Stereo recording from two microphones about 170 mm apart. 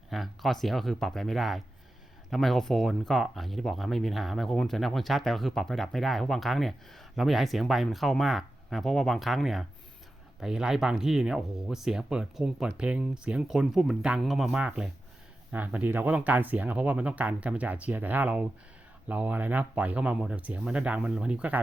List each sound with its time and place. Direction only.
0.1 s speech: centre (ahead or behind)